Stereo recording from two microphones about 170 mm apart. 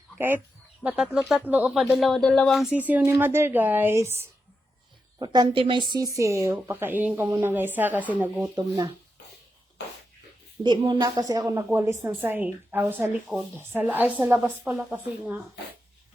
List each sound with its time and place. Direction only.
0.9 s speech: 5° right (ahead or behind)
5.2 s a woman's voice: 25° right (ahead or behind); by 8.4 s 10° right (ahead or behind)
8.5 s a woman's voice: 25° right (ahead or behind)
10.6 s speech: 25° right (ahead or behind); by 15.4 s 10° right (ahead or behind)